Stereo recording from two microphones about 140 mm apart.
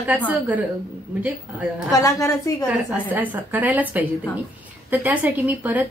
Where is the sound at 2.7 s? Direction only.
10° right (ahead or behind).